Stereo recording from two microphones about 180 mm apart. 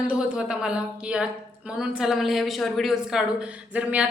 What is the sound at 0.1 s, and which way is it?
A woman's voice, 5° right (ahead or behind).